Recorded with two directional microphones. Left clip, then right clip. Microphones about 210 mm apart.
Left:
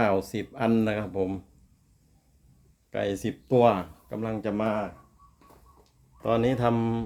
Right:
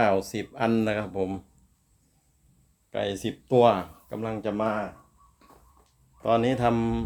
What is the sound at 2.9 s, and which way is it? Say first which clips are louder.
Speech: even; 5° left (ahead or behind).